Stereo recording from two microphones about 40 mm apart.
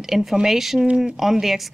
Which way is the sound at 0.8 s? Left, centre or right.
Right.